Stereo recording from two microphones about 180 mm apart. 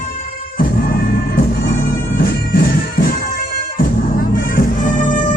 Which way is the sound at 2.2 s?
55° left (ahead or behind).